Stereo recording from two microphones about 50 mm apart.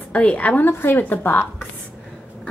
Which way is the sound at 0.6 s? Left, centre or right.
Left.